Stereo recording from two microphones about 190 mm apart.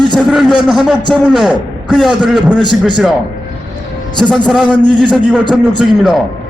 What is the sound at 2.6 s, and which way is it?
Speech, 25° right (ahead or behind).